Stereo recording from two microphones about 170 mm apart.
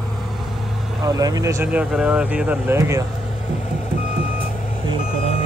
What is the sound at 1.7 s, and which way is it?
Speech, 10° right (ahead or behind).